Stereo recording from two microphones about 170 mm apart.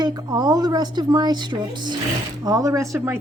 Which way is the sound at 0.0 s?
25° right (ahead or behind).